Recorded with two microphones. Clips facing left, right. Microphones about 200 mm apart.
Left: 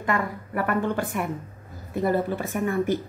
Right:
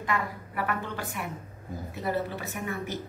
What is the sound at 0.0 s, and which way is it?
Speech, 50° left (ahead or behind).